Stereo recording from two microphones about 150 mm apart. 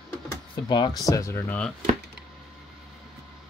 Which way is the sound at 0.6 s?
30° left (ahead or behind).